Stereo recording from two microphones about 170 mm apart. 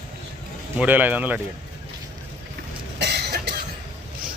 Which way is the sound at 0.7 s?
10° right (ahead or behind).